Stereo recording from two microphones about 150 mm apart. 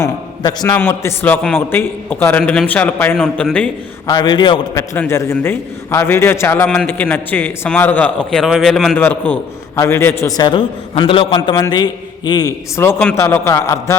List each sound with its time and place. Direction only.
0.0 s a man's voice: 25° left (ahead or behind)
0.8 s a man's voice: 15° left (ahead or behind)
4.0 s a man's voice: 25° left (ahead or behind)
4.8 s a man's voice: 15° left (ahead or behind)